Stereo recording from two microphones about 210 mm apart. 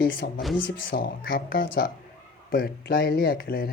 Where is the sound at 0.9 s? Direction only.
45° left (ahead or behind).